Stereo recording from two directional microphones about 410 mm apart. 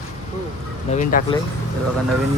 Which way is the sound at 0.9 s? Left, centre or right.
Centre.